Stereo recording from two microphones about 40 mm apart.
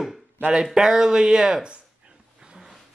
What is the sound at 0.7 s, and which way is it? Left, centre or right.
Speech, centre.